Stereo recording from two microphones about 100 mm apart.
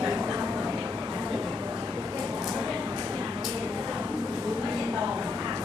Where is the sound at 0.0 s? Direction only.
10° right (ahead or behind).